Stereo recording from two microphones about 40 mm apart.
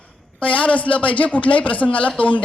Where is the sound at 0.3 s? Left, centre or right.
Left.